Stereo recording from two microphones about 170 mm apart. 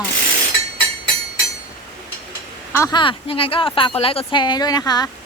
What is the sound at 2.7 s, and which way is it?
Speech, 15° left (ahead or behind).